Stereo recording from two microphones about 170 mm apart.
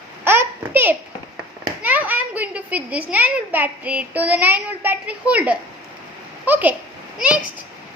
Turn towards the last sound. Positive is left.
turn(degrees=-5)  # may be behind; listen again after turning